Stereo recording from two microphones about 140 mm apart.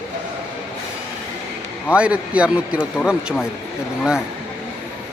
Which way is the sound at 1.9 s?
10° right (ahead or behind).